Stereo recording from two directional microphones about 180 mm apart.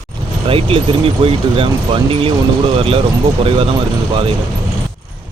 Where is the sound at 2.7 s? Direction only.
30° right (ahead or behind).